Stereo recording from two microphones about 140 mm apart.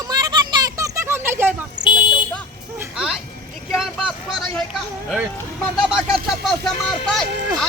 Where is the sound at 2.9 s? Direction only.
5° right (ahead or behind).